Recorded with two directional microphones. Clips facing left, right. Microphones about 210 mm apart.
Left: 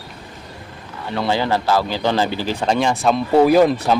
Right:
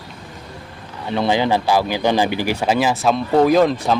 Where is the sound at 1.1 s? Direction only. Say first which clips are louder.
Right 2 dB; 15° right (ahead or behind).